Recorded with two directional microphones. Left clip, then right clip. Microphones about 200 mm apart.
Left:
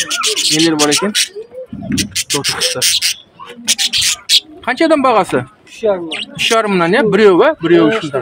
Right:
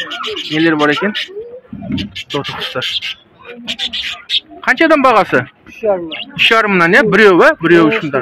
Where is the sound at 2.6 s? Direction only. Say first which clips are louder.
Left 4 dB; 30° left (ahead or behind).